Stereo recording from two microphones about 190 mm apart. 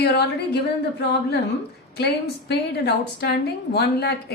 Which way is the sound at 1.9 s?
60° left (ahead or behind).